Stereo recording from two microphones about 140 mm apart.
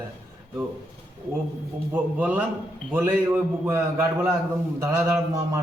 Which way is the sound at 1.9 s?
10° right (ahead or behind).